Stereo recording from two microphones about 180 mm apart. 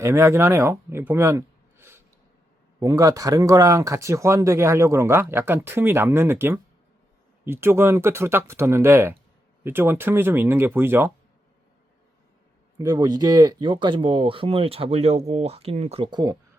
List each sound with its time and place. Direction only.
0.0 s a man's voice: 15° right (ahead or behind)
12.8 s speech: 20° right (ahead or behind)